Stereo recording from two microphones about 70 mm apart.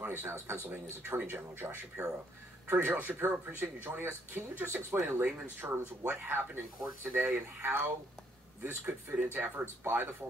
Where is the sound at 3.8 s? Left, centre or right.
Right.